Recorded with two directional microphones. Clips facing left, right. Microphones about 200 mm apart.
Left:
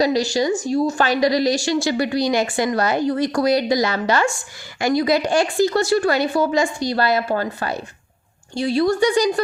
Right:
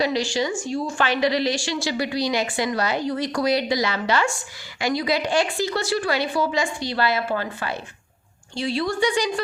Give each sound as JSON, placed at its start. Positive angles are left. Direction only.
{"t": 0.0, "sound": "a woman's voice", "side_deg": 40}